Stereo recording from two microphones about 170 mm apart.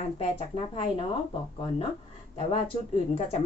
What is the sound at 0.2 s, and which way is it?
Speech, 35° left (ahead or behind).